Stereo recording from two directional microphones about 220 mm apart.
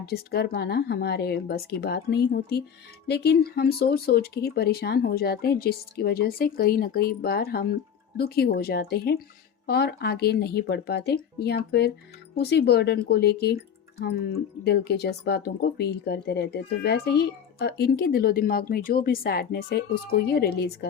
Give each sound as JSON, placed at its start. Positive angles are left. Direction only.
{"t": 0.0, "sound": "speech", "side_deg": 45}
{"t": 14.6, "sound": "speech", "side_deg": 50}